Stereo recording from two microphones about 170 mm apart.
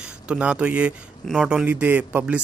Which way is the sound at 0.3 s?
5° right (ahead or behind).